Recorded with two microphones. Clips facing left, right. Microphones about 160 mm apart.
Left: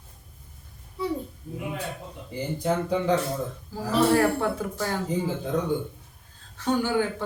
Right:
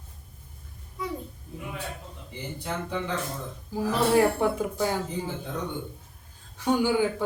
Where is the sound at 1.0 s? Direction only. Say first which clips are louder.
Left 5 dB; 30° left (ahead or behind).